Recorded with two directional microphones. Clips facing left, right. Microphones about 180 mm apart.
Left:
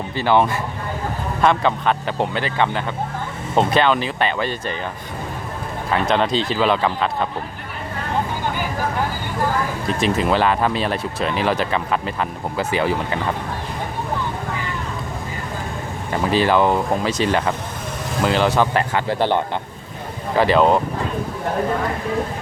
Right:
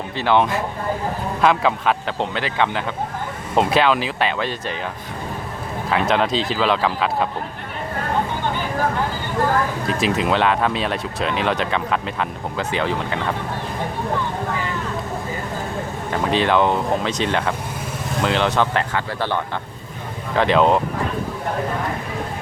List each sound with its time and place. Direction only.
0.2 s speech: centre (ahead or behind)
2.1 s speech: 10° left (ahead or behind)
5.9 s speech: centre (ahead or behind)
10.0 s speech: centre (ahead or behind)
16.2 s speech: 5° left (ahead or behind)
19.0 s speech: 20° left (ahead or behind)
20.3 s speech: 5° left (ahead or behind)